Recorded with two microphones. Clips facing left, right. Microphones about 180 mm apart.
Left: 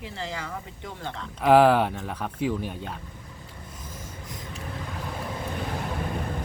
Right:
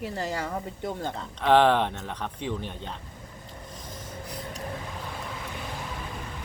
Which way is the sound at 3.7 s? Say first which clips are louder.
Even; 10° left (ahead or behind).